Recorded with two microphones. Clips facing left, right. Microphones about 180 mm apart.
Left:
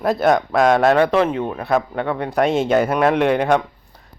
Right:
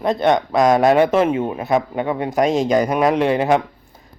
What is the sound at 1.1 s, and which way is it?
Speech, 10° right (ahead or behind).